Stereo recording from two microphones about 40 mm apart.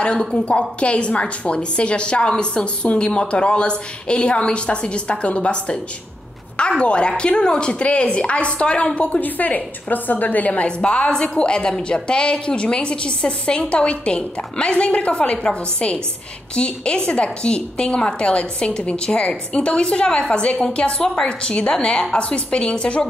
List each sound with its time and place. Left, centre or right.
0.5 s a woman's voice: left
6.8 s a woman's voice: left
9.2 s a woman's voice: left